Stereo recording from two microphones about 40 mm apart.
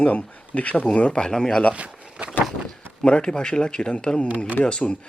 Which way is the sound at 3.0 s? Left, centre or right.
Left.